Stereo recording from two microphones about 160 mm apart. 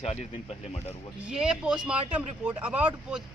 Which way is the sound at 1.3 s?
5° right (ahead or behind).